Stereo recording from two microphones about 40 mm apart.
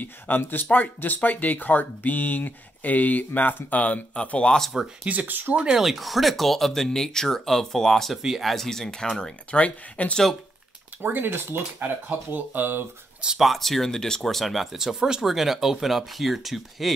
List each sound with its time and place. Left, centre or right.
0.0 s speech: left
0.7 s speech: left
3.7 s speech: left
5.0 s speech: right
5.3 s speech: right
5.8 s speech: centre
9.5 s speech: left
11.0 s speech: right
11.8 s speech: right
13.4 s speech: centre
14.2 s speech: centre